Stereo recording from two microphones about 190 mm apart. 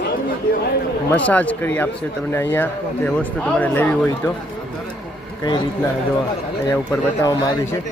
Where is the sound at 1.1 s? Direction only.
5° left (ahead or behind).